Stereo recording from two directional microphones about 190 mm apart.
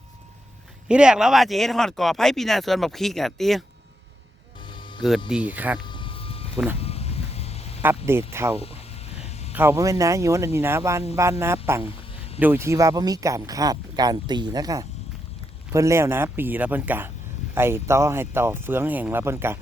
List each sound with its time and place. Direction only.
0.9 s speech: 5° right (ahead or behind)
5.3 s speech: 10° right (ahead or behind)
5.8 s vehicle: 25° left (ahead or behind)
6.7 s sheep: 30° left (ahead or behind)
7.8 s speech: 10° right (ahead or behind)
8.5 s a sound: 30° left (ahead or behind)
9.6 s speech: 15° right (ahead or behind)